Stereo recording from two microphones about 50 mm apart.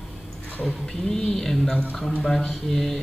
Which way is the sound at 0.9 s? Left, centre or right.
Centre.